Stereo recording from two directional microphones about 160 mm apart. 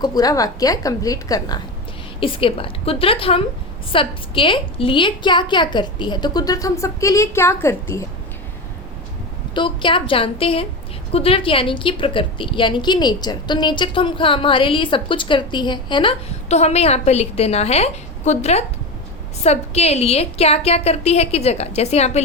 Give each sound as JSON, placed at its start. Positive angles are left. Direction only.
{"t": 0.0, "sound": "a woman's voice", "side_deg": 25}
{"t": 9.6, "sound": "a woman's voice", "side_deg": 30}
{"t": 16.5, "sound": "a woman's voice", "side_deg": 40}